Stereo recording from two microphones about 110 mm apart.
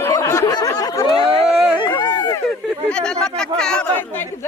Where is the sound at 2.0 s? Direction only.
35° left (ahead or behind).